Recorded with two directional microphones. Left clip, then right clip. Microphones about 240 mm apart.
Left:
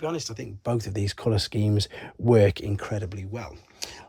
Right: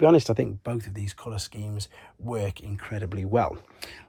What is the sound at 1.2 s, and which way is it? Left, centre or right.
Speech, left.